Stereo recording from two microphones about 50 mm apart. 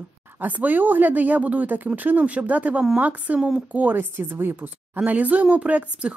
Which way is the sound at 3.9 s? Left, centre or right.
Right.